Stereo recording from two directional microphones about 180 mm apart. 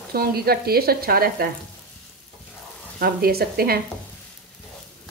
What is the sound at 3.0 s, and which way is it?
Speech, 60° right (ahead or behind).